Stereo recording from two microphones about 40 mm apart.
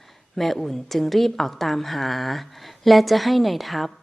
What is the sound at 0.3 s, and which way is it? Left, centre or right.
A woman's voice, centre.